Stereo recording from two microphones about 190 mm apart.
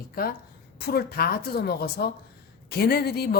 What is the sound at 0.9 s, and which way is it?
A woman's voice, 55° left (ahead or behind).